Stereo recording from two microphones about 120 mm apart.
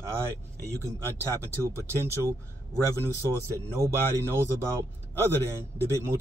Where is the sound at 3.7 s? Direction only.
25° right (ahead or behind).